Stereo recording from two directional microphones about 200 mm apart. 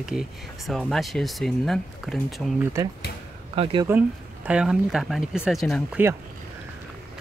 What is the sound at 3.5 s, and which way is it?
Speech, 25° right (ahead or behind).